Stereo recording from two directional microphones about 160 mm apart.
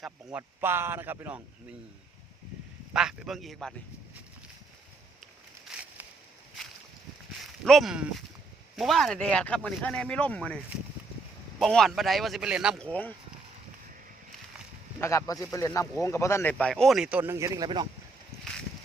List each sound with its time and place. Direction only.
0.3 s speech: 15° right (ahead or behind)
2.9 s speech: 5° right (ahead or behind)
5.7 s a sound: centre (ahead or behind)
7.6 s speech: centre (ahead or behind)
11.6 s speech: centre (ahead or behind)
12.8 s speech: 10° left (ahead or behind)
15.0 s speech: 20° left (ahead or behind); by 17.8 s 25° right (ahead or behind)